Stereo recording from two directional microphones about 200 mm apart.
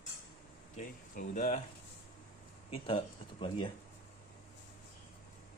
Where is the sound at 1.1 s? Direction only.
40° left (ahead or behind).